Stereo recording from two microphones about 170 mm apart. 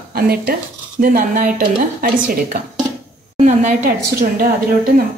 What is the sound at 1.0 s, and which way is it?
Speech, 55° right (ahead or behind).